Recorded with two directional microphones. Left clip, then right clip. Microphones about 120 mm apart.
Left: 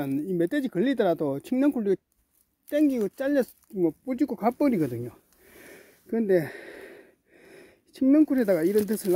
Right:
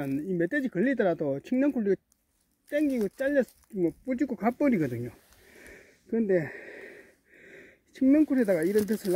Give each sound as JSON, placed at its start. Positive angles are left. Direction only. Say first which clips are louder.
{"t": 0.0, "sound": "speech", "louder": "left 3 dB", "side_deg": 35}
{"t": 5.6, "sound": "wheeze", "louder": "left 2 dB", "side_deg": 25}
{"t": 8.8, "sound": "speech", "louder": "left 2 dB", "side_deg": 35}